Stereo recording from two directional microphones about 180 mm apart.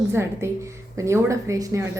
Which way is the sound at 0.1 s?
15° right (ahead or behind).